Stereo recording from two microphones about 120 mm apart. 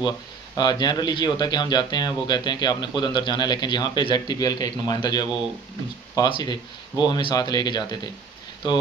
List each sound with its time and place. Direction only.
0.6 s speech: 35° left (ahead or behind)